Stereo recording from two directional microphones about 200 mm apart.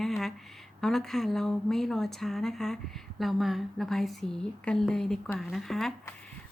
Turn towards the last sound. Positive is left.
turn(degrees=5)  # may be behind; listen again after turning